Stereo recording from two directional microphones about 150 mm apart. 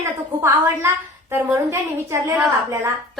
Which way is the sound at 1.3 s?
20° right (ahead or behind).